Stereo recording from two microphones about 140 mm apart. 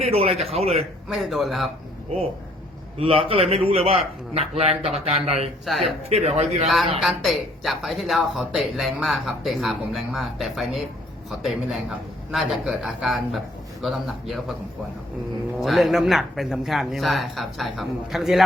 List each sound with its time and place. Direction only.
0.0 s a man's voice: 45° right (ahead or behind)
1.0 s a woman's voice: centre (ahead or behind)
3.0 s a man's voice: 40° right (ahead or behind)
5.6 s a woman's voice: centre (ahead or behind)
6.1 s a man's voice: 50° right (ahead or behind)
7.0 s a woman's voice: centre (ahead or behind)
15.6 s a woman's voice: centre (ahead or behind)